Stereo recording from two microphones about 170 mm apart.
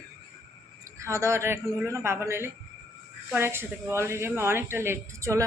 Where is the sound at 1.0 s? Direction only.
15° right (ahead or behind).